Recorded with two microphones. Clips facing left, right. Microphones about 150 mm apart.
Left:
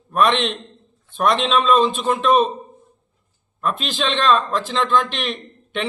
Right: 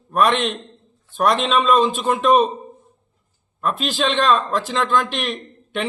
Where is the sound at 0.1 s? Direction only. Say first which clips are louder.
Even; centre (ahead or behind).